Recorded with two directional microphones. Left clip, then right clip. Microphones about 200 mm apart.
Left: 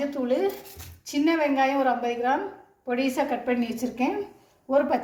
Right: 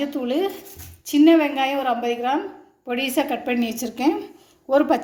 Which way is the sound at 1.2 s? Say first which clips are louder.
Right 6 dB; 45° right (ahead or behind).